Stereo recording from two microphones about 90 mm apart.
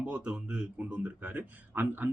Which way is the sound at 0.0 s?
15° right (ahead or behind).